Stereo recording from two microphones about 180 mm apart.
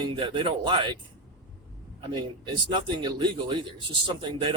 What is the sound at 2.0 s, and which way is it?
Speech, 25° right (ahead or behind).